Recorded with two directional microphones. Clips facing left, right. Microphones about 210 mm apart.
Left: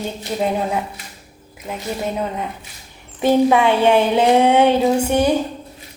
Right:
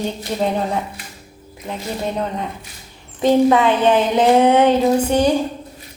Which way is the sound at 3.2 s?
10° left (ahead or behind).